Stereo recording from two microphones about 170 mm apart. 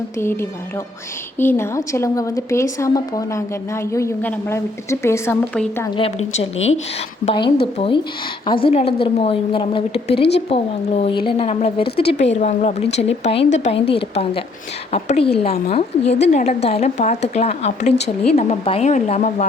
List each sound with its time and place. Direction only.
0.2 s a woman's voice: 15° left (ahead or behind)
5.5 s a woman's voice: 5° left (ahead or behind)
6.0 s a woman's voice: 35° left (ahead or behind)